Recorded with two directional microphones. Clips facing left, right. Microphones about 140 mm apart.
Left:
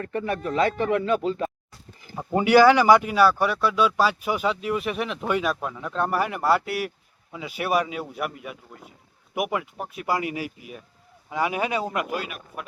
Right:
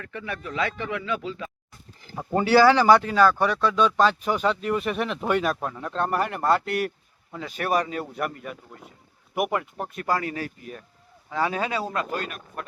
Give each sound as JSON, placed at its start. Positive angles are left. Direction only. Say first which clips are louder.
{"t": 0.0, "sound": "speech", "louder": "left 7 dB", "side_deg": 45}
{"t": 2.1, "sound": "speech", "louder": "left 2 dB", "side_deg": 15}